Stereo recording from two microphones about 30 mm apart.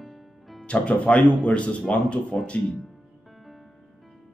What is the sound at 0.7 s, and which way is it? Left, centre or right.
Speech, left.